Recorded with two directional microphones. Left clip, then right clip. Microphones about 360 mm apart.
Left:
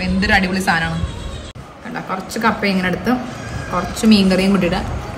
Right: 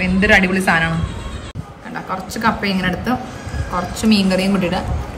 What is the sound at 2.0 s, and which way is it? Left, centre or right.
A woman's voice, centre.